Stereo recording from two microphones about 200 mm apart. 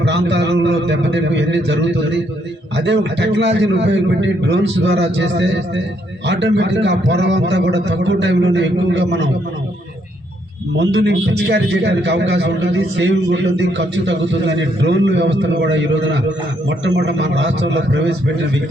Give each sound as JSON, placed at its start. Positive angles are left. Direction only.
{"t": 0.0, "sound": "a man's voice", "side_deg": -60}
{"t": 10.8, "sound": "a man's voice", "side_deg": -60}